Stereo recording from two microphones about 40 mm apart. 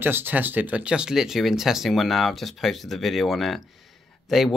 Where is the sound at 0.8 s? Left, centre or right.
Right.